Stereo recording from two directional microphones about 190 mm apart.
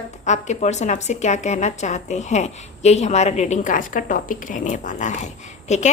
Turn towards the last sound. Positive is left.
turn(degrees=35)  # may be behind; listen again after turning